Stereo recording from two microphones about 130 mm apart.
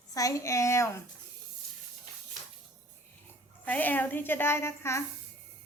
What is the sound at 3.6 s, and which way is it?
A woman's voice, 15° left (ahead or behind).